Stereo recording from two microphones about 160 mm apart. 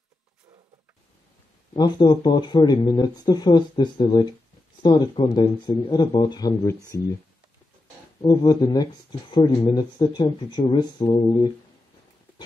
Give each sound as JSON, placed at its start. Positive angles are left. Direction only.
{"t": 1.7, "sound": "speech", "side_deg": 30}
{"t": 5.3, "sound": "speech", "side_deg": 20}
{"t": 8.2, "sound": "speech", "side_deg": 30}